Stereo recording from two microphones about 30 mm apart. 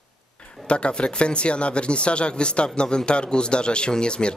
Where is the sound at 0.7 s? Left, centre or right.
Left.